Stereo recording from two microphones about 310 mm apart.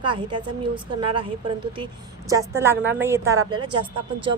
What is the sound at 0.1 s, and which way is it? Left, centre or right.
A woman's voice, centre.